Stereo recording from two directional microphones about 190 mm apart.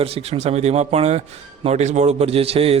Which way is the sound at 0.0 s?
30° right (ahead or behind).